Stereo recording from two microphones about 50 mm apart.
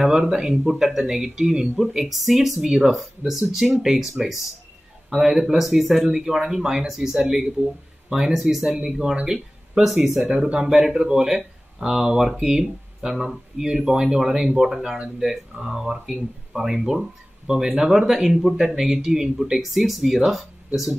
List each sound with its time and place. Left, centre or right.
0.0 s speech: centre